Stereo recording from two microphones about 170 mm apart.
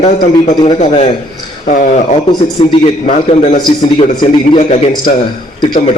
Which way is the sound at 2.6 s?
35° left (ahead or behind).